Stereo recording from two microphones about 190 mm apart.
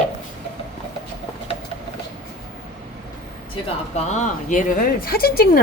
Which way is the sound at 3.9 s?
40° left (ahead or behind).